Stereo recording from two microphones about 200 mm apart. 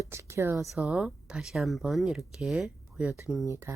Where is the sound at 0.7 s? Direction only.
Centre (ahead or behind).